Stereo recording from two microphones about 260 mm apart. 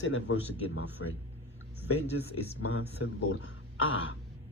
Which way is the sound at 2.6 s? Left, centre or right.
Left.